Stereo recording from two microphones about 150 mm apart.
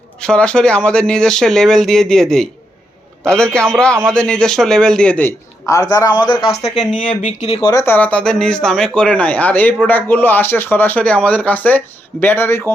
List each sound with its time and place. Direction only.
0.2 s a man's voice: 5° left (ahead or behind); by 6.5 s 30° left (ahead or behind)
7.2 s speech: 50° left (ahead or behind)
7.7 s speech: 20° left (ahead or behind)